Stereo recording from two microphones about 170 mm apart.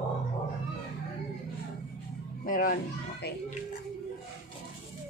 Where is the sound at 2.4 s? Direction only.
55° left (ahead or behind).